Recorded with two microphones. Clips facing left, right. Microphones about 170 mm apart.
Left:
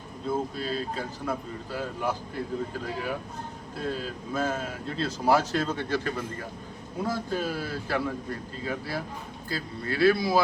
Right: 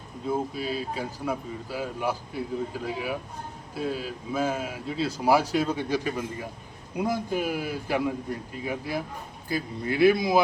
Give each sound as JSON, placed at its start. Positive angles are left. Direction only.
{"t": 0.3, "sound": "speech", "side_deg": -10}